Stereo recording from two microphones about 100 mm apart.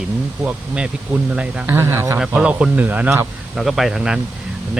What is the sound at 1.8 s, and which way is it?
Speech, 25° right (ahead or behind).